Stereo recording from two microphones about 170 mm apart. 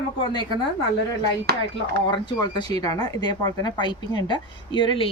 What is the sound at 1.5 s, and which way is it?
Speech, 65° right (ahead or behind).